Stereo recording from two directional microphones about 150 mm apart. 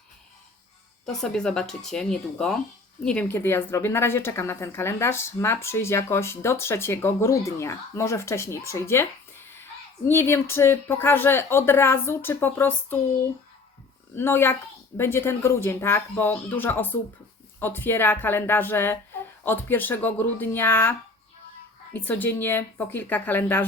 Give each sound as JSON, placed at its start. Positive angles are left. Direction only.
{"t": 1.0, "sound": "a woman's voice", "side_deg": 5}
{"t": 10.1, "sound": "a woman's voice", "side_deg": 15}
{"t": 14.2, "sound": "a woman's voice", "side_deg": 15}
{"t": 21.9, "sound": "a woman's voice", "side_deg": 10}